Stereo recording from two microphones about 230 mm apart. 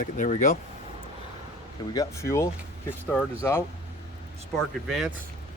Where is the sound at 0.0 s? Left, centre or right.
Left.